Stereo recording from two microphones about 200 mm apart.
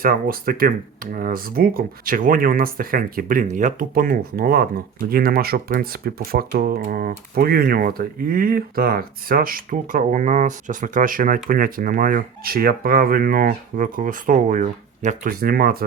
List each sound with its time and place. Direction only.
0.0 s speech: 45° right (ahead or behind)